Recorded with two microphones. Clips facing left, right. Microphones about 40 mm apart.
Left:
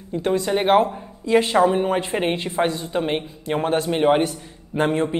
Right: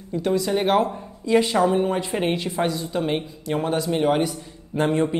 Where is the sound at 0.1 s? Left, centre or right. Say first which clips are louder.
Left 1 dB; left.